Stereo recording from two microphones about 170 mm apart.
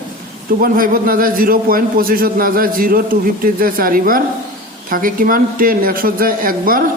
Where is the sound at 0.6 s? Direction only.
55° right (ahead or behind).